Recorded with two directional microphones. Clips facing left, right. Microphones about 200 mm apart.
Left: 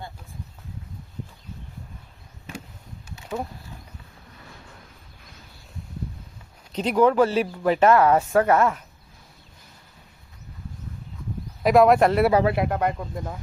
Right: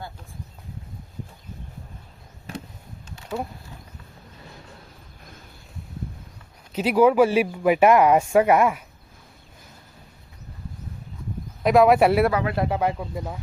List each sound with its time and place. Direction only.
6.7 s speech: 5° right (ahead or behind)
11.6 s speech: centre (ahead or behind)
12.3 s speech: 30° left (ahead or behind)
12.6 s speech: 5° right (ahead or behind)